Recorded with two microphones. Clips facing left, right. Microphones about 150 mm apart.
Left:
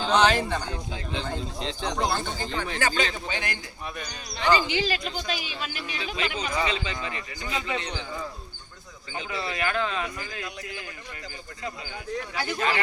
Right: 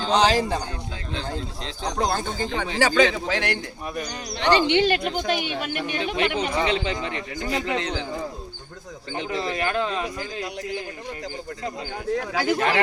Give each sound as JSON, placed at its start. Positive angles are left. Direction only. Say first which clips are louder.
{"t": 0.1, "sound": "speech", "louder": "right 2 dB", "side_deg": -35}
{"t": 1.1, "sound": "a man's voice", "louder": "right 1 dB", "side_deg": 0}
{"t": 2.0, "sound": "speech", "louder": "right 4 dB", "side_deg": -45}
{"t": 2.7, "sound": "a man's voice", "louder": "right 10 dB", "side_deg": -90}
{"t": 4.4, "sound": "a woman's voice", "louder": "right 5 dB", "side_deg": -70}
{"t": 7.3, "sound": "speech", "louder": "right 6 dB", "side_deg": -40}
{"t": 7.6, "sound": "a man's voice", "louder": "right 5 dB", "side_deg": -85}
{"t": 9.3, "sound": "speech", "louder": "right 3 dB", "side_deg": -40}
{"t": 12.1, "sound": "a man's voice", "louder": "right 7 dB", "side_deg": -90}
{"t": 12.5, "sound": "a woman's voice", "louder": "right 1 dB", "side_deg": -65}